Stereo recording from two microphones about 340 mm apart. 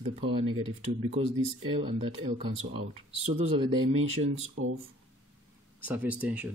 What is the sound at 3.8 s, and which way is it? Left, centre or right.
Speech, right.